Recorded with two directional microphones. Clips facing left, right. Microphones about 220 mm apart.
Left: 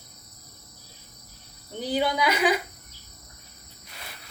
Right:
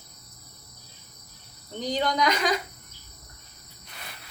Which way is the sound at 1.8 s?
10° left (ahead or behind).